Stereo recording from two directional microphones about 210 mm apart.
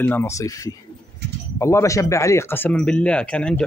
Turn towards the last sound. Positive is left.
turn(degrees=5)  # may be behind; listen again after turning